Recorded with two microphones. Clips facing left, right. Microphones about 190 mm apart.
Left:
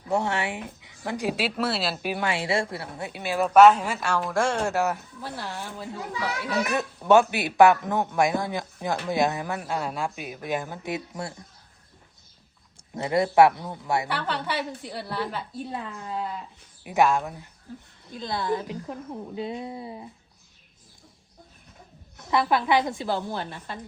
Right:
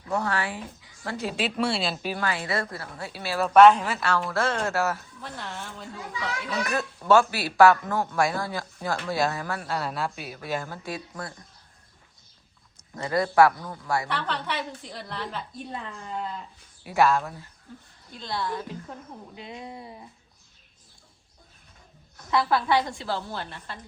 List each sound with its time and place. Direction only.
0.1 s speech: 25° left (ahead or behind); by 2.2 s 10° left (ahead or behind)
2.5 s speech: 25° left (ahead or behind)
5.4 s a woman's voice: centre (ahead or behind)
7.3 s speech: 20° left (ahead or behind)
13.0 s speech: 20° left (ahead or behind)
14.1 s a woman's voice: 5° left (ahead or behind)
16.9 s speech: 15° left (ahead or behind)
18.3 s speech: 25° left (ahead or behind)
22.3 s speech: 20° left (ahead or behind)